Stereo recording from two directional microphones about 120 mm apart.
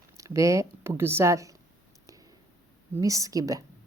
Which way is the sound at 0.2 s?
25° right (ahead or behind).